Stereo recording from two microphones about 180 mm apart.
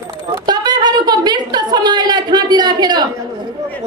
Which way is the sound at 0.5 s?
25° right (ahead or behind).